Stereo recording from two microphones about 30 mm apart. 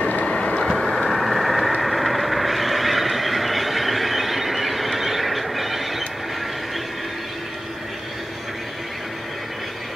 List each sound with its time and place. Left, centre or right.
0.2 s vehicle: left
0.7 s vehicle: centre
1.8 s neigh: centre